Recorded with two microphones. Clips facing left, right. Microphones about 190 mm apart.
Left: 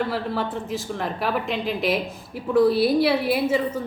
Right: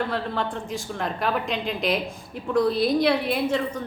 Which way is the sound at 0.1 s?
5° left (ahead or behind).